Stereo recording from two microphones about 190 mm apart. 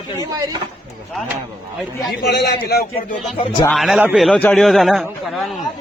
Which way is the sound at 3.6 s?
Centre (ahead or behind).